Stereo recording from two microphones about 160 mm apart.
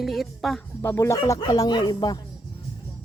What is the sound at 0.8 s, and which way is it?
Speech, 15° left (ahead or behind).